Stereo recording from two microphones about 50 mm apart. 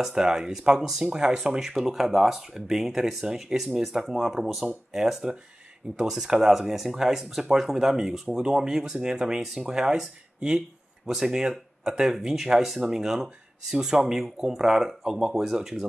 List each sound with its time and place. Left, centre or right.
0.1 s speech: centre